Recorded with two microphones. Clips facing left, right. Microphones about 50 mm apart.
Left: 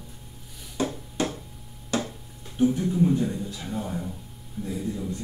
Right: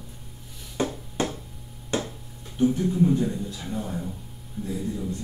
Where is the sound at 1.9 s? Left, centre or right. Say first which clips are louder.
Even; right.